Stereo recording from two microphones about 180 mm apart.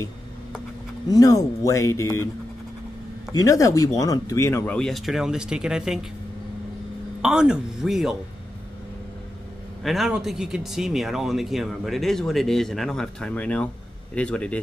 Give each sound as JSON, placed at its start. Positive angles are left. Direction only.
{"t": 1.0, "sound": "speech", "side_deg": 20}
{"t": 3.3, "sound": "speech", "side_deg": 20}
{"t": 7.2, "sound": "speech", "side_deg": -5}
{"t": 9.8, "sound": "speech", "side_deg": 0}